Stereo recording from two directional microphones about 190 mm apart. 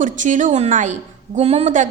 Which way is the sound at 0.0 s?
40° right (ahead or behind).